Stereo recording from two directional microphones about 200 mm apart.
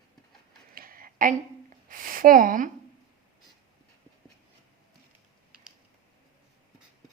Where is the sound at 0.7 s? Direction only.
45° right (ahead or behind).